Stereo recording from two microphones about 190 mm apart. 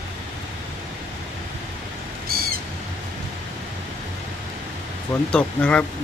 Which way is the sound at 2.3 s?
55° right (ahead or behind).